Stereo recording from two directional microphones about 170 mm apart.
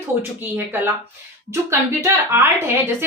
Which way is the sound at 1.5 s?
15° right (ahead or behind).